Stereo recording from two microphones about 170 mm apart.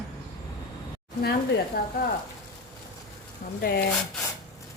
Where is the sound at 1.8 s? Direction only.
65° left (ahead or behind).